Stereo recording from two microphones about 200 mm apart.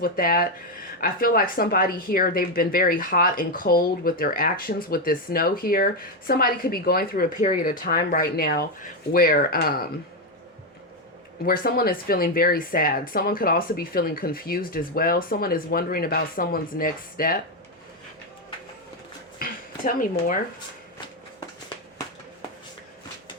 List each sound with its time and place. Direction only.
0.0 s speech: 45° left (ahead or behind)
11.4 s speech: 45° left (ahead or behind)
19.4 s a sound: 45° left (ahead or behind)